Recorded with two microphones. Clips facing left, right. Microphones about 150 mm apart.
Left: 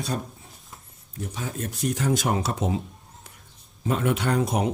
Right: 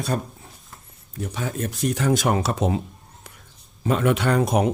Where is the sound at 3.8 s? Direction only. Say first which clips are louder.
Right 4 dB; 85° right; by 4.7 s 65° right (ahead or behind).